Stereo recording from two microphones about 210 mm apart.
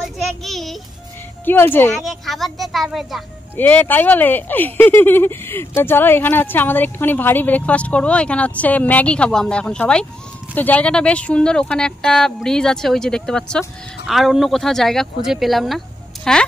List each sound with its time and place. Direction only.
0.0 s child singing: centre (ahead or behind)
1.4 s speech: 10° left (ahead or behind)